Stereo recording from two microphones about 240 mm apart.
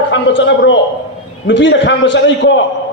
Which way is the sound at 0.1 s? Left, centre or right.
Left.